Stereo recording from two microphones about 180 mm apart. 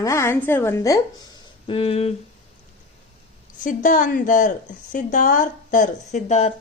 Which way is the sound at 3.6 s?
45° left (ahead or behind).